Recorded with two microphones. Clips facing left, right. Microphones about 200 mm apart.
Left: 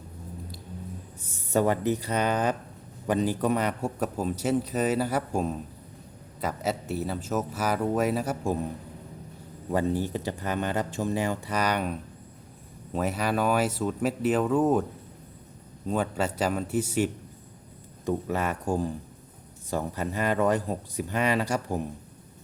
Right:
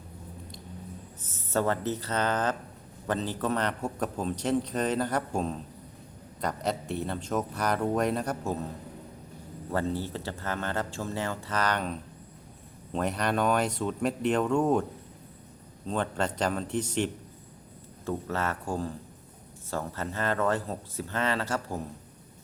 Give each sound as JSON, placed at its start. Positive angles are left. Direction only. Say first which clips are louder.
{"t": 1.2, "sound": "a man's voice", "louder": "left 4 dB", "side_deg": 15}
{"t": 9.6, "sound": "a man's voice", "louder": "left 4 dB", "side_deg": 15}
{"t": 15.9, "sound": "a man's voice", "louder": "left 2 dB", "side_deg": 5}